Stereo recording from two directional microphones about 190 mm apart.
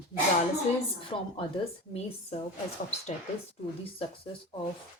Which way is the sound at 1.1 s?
30° left (ahead or behind).